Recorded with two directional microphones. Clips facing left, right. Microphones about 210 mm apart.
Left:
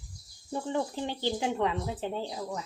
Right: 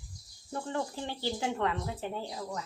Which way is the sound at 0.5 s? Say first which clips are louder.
Left 3 dB; 15° left (ahead or behind).